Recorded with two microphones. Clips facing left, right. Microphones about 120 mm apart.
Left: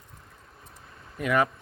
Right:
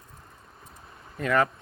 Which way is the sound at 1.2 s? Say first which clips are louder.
Even; 15° left (ahead or behind).